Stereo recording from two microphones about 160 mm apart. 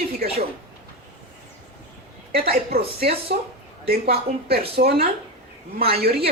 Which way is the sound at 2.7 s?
70° right (ahead or behind).